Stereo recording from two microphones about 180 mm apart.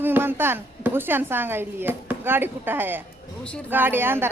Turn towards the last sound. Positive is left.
turn(degrees=-10)  # may be behind; listen again after turning